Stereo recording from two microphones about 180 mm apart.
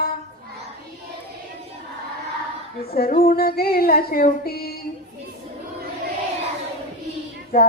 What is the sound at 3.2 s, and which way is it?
Female singing, 60° left (ahead or behind).